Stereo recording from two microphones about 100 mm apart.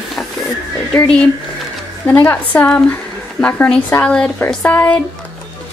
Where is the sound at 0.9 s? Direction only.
10° left (ahead or behind).